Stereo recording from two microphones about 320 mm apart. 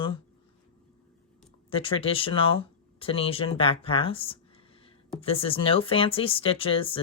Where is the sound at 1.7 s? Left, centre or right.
Centre.